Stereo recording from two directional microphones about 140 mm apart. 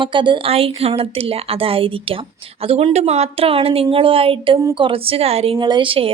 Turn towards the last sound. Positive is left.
turn(degrees=-40)  # may be behind; listen again after turning